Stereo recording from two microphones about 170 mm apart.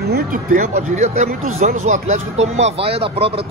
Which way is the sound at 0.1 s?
55° right (ahead or behind).